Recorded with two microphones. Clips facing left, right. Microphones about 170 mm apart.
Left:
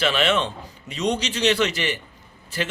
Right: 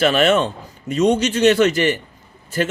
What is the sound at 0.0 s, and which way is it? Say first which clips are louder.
A man's voice: right 6 dB; 45° right (ahead or behind).